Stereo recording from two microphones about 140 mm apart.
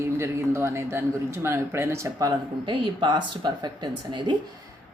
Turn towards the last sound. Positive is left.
turn(degrees=-35)  # may be behind; listen again after turning